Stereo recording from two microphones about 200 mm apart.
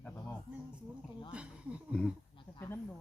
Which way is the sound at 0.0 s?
10° left (ahead or behind).